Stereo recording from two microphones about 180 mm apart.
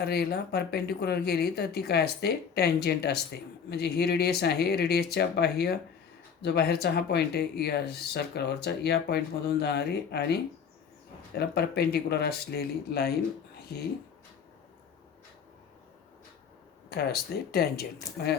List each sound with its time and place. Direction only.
0.0 s speech: 65° left (ahead or behind)
11.3 s speech: 65° left (ahead or behind)
13.6 s a sound: 60° left (ahead or behind)
17.5 s speech: 60° left (ahead or behind)